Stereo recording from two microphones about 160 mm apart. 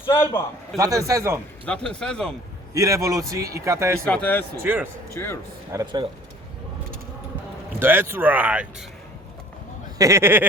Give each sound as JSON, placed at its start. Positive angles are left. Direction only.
{"t": 0.1, "sound": "speech", "side_deg": 15}
{"t": 0.8, "sound": "a man's voice", "side_deg": -20}
{"t": 1.6, "sound": "speech", "side_deg": 5}
{"t": 2.7, "sound": "a man's voice", "side_deg": -20}
{"t": 4.0, "sound": "speech", "side_deg": 10}
{"t": 4.6, "sound": "speech", "side_deg": -15}
{"t": 5.1, "sound": "speech", "side_deg": 15}
{"t": 5.7, "sound": "a man's voice", "side_deg": -20}
{"t": 7.8, "sound": "speech", "side_deg": -15}
{"t": 10.0, "sound": "speech", "side_deg": -20}